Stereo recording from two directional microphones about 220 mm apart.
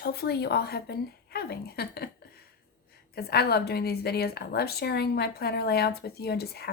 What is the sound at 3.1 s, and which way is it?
A woman's voice, 45° left (ahead or behind).